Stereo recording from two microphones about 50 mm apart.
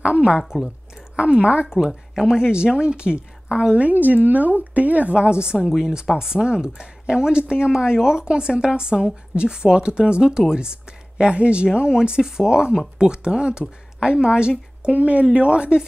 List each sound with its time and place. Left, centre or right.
0.0 s a sound: right
0.4 s a woman's voice: centre
1.1 s a woman's voice: right
2.2 s a woman's voice: centre